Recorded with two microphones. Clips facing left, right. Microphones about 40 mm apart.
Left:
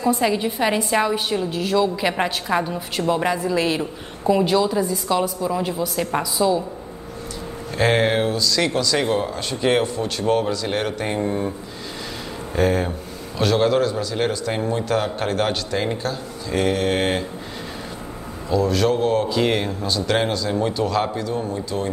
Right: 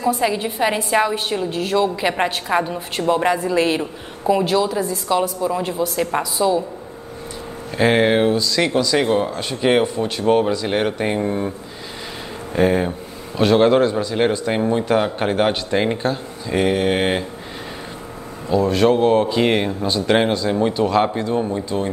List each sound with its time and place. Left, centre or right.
0.0 s a woman's voice: centre
7.7 s a woman's voice: centre
12.5 s a man's voice: centre
18.5 s a man's voice: right